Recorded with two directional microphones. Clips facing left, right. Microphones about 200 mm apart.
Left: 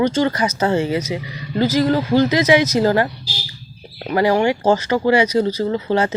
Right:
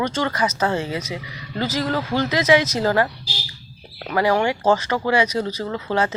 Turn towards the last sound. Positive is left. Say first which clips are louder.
# left 5 dB
turn(degrees=20)  # may be behind; listen again after turning